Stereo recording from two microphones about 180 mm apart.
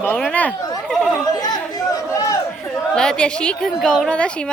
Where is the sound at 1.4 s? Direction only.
20° left (ahead or behind).